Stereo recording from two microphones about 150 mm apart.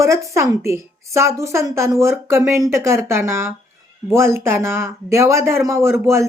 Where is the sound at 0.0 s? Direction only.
20° right (ahead or behind).